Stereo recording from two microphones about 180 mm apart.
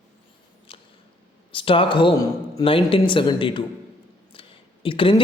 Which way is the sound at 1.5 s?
30° left (ahead or behind).